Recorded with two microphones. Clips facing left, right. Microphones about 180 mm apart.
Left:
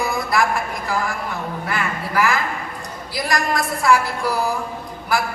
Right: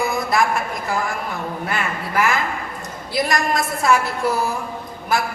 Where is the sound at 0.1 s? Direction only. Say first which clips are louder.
Right 1 dB; 20° right (ahead or behind).